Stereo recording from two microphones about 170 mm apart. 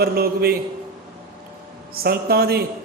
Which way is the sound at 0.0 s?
65° right (ahead or behind).